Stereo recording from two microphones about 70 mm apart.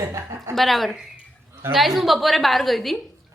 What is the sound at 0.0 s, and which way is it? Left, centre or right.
Speech, right.